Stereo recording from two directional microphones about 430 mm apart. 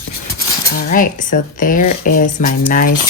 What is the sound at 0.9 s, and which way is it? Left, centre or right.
Speech, centre.